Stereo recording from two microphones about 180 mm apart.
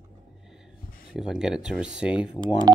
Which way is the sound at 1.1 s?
5° right (ahead or behind).